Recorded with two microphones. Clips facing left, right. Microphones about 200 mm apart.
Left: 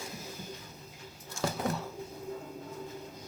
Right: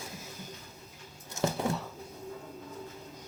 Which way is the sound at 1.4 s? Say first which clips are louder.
Right 3 dB; 20° right (ahead or behind).